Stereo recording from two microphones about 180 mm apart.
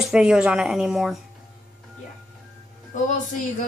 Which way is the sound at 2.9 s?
45° left (ahead or behind).